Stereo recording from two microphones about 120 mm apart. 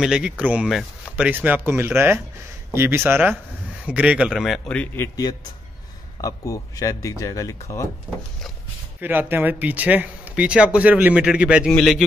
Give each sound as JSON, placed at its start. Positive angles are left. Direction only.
{"t": 0.0, "sound": "speech", "side_deg": -5}
{"t": 4.6, "sound": "speech", "side_deg": 10}
{"t": 5.0, "sound": "a man's voice", "side_deg": 30}
{"t": 9.0, "sound": "a man's voice", "side_deg": -15}